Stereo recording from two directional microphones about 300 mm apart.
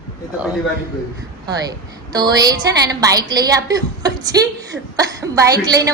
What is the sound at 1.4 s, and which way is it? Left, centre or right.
A woman's voice, centre.